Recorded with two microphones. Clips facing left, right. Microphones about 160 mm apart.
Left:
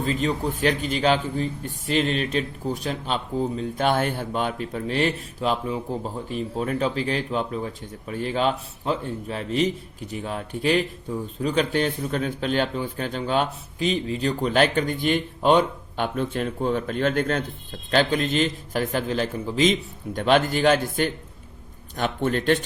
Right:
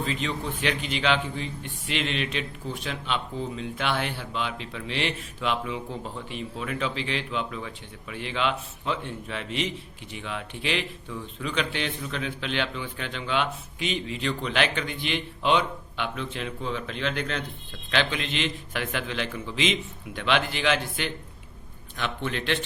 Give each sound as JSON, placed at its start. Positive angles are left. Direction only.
{"t": 0.0, "sound": "a man's voice", "side_deg": 40}